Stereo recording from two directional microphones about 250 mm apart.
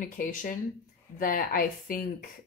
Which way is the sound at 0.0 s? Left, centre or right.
Left.